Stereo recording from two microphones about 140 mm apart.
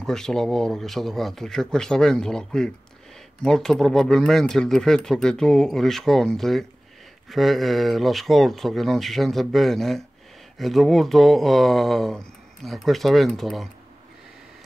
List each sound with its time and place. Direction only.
0.0 s speech: 5° left (ahead or behind)